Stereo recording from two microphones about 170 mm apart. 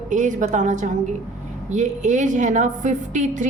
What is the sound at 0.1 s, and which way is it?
A woman's voice, 50° right (ahead or behind).